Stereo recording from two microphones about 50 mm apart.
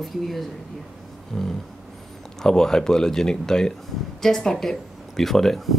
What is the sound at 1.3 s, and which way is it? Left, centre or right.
Speech, centre.